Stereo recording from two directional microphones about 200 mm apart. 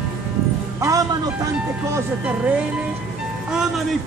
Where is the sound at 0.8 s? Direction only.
15° right (ahead or behind).